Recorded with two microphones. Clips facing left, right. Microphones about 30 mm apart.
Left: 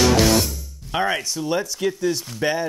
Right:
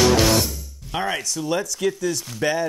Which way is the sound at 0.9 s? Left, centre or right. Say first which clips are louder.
Left 2 dB; centre.